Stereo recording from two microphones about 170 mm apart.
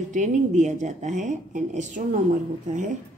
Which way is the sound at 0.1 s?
45° right (ahead or behind).